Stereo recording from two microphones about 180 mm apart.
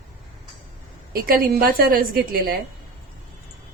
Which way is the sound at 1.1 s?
55° right (ahead or behind).